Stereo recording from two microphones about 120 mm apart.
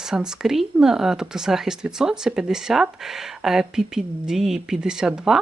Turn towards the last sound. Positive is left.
turn(degrees=-5)  # may be behind; listen again after turning